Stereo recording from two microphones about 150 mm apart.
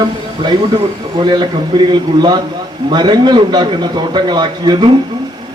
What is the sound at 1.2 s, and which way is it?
A man's voice, 30° right (ahead or behind).